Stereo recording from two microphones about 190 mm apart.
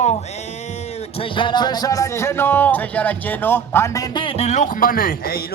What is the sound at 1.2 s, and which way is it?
Speech, 25° left (ahead or behind).